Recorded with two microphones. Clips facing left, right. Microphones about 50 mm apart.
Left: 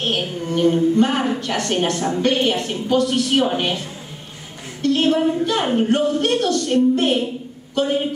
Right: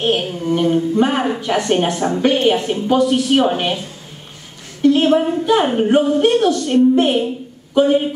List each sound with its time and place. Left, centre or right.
0.0 s a sound: centre
0.9 s speech: centre
4.8 s a woman's voice: centre